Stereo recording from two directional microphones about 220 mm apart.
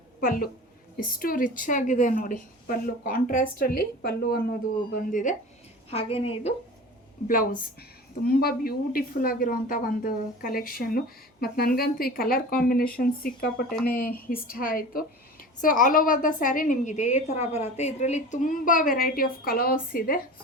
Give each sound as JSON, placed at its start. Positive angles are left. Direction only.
{"t": 0.2, "sound": "a woman's voice", "side_deg": 40}
{"t": 7.3, "sound": "a woman's voice", "side_deg": 40}